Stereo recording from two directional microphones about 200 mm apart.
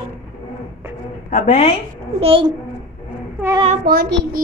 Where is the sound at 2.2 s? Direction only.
25° right (ahead or behind).